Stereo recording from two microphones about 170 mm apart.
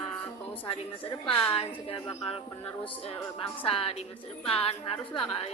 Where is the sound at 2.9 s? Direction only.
30° left (ahead or behind).